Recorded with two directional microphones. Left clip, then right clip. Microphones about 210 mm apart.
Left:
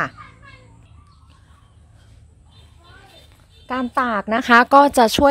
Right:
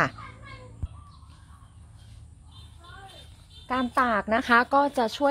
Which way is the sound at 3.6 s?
40° left (ahead or behind).